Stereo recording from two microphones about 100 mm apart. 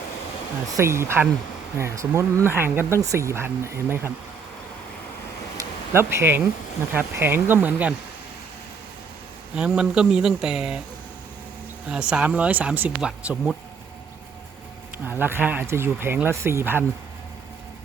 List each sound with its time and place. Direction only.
0.8 s speech: 25° right (ahead or behind)
5.9 s speech: 25° right (ahead or behind)
9.6 s speech: 10° right (ahead or behind)
11.9 s speech: 10° right (ahead or behind)
13.0 s speech: 5° right (ahead or behind)
14.9 s speech: 20° right (ahead or behind)